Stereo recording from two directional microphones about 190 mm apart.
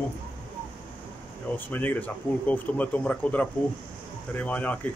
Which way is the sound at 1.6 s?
10° left (ahead or behind).